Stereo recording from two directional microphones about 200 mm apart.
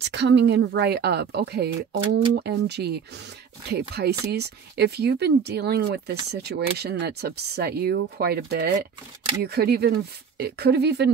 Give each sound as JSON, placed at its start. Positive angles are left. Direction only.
{"t": 0.0, "sound": "speech", "side_deg": -60}